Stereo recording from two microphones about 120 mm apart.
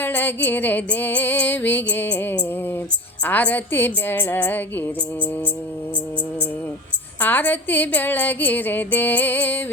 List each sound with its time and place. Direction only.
0.0 s music: 15° left (ahead or behind)
7.2 s music: 15° left (ahead or behind)